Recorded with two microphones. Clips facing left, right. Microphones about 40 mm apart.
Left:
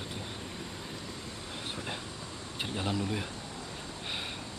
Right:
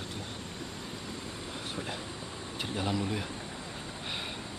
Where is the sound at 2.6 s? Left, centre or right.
Centre.